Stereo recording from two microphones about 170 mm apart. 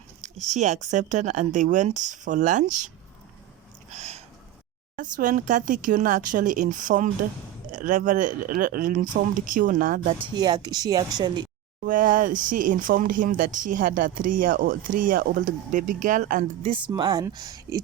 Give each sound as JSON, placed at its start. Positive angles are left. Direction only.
{"t": 0.2, "sound": "speech", "side_deg": -45}
{"t": 3.8, "sound": "a sound", "side_deg": -40}
{"t": 4.9, "sound": "speech", "side_deg": -50}
{"t": 10.0, "sound": "speech", "side_deg": -30}
{"t": 11.8, "sound": "speech", "side_deg": -50}
{"t": 16.6, "sound": "speech", "side_deg": -30}